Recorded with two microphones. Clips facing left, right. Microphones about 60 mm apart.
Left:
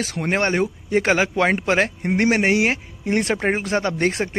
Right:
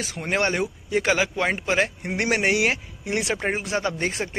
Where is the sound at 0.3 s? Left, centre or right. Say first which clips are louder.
Left 3 dB; left.